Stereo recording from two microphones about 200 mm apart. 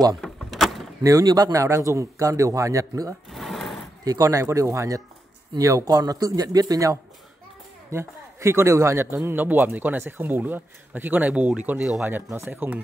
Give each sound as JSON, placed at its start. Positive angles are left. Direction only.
{"t": 0.1, "sound": "vehicle", "side_deg": 0}
{"t": 1.0, "sound": "speech", "side_deg": -15}
{"t": 3.3, "sound": "sewing machine", "side_deg": 0}
{"t": 4.0, "sound": "speech", "side_deg": -15}